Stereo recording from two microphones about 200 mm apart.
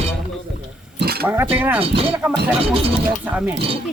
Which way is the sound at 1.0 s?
50° right (ahead or behind).